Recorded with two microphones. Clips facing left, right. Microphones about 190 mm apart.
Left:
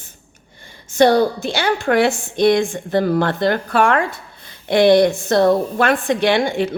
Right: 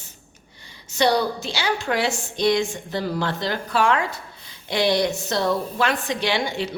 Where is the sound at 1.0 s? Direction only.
50° left (ahead or behind).